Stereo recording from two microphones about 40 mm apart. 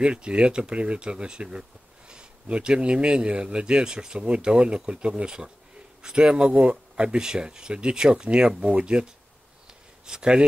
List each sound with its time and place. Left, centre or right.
0.0 s speech: right
10.0 s speech: centre